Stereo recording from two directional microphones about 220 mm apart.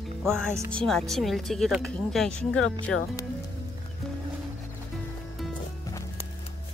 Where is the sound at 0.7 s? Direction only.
5° left (ahead or behind).